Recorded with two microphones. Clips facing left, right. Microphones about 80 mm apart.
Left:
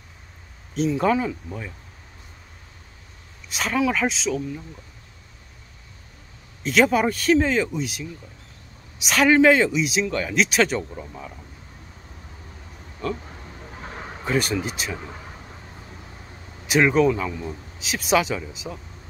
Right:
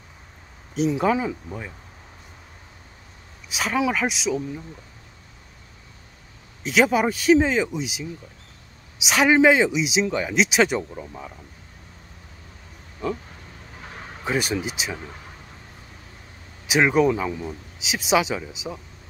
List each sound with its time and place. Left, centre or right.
0.7 s speech: centre
3.4 s speech: centre
6.6 s speech: centre
13.7 s a sound: left
14.2 s speech: centre
16.6 s speech: centre